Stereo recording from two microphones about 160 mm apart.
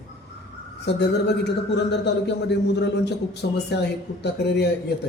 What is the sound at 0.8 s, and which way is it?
A man's voice, 90° left.